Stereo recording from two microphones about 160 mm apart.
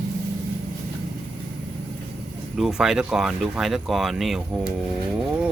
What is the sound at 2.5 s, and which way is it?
Speech, centre (ahead or behind).